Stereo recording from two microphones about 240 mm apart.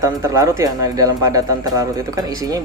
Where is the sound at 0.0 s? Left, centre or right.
Centre.